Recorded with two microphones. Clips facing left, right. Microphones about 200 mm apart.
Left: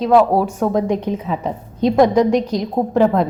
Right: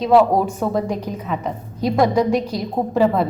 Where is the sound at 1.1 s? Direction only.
30° left (ahead or behind).